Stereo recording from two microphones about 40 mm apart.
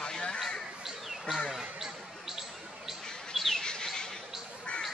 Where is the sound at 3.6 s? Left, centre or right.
Centre.